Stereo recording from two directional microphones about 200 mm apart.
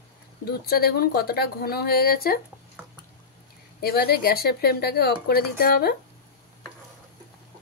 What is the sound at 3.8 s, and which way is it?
Speech, 50° left (ahead or behind).